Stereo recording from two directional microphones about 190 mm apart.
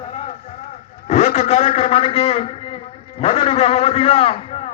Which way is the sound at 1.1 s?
35° left (ahead or behind).